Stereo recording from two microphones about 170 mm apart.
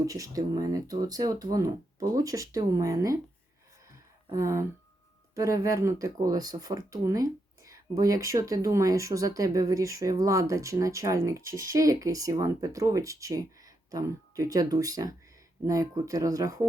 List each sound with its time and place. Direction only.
0.0 s speech: 20° right (ahead or behind)
4.3 s speech: 20° right (ahead or behind)